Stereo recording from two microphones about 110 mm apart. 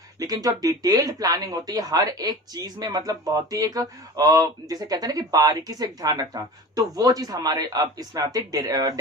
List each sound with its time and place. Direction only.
0.2 s speech: 35° right (ahead or behind)